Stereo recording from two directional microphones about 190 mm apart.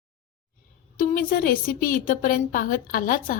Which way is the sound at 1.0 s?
45° left (ahead or behind).